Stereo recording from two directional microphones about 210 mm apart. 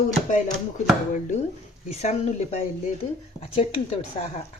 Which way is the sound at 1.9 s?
30° left (ahead or behind).